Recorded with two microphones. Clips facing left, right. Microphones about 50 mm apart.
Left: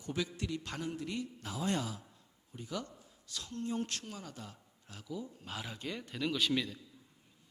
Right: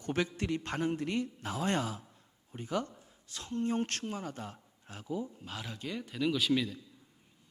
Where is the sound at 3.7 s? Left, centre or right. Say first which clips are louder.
Right 5 dB; right.